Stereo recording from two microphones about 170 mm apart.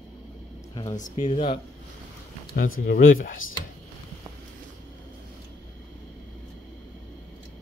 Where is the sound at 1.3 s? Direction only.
35° left (ahead or behind).